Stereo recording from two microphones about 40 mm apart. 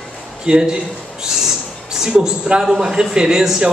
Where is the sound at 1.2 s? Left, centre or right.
Centre.